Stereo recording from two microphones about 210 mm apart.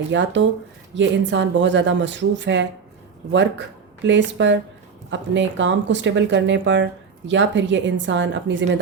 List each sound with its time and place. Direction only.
0.1 s speech: 60° right (ahead or behind)